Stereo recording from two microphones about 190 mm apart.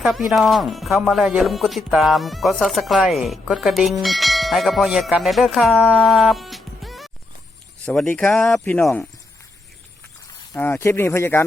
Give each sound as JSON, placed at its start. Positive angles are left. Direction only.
{"t": 0.0, "sound": "speech", "side_deg": 0}
{"t": 10.5, "sound": "speech", "side_deg": 10}